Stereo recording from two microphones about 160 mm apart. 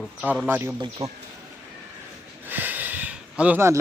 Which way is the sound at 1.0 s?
40° right (ahead or behind).